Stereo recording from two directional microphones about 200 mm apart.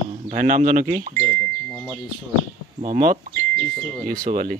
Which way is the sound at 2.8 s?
40° right (ahead or behind).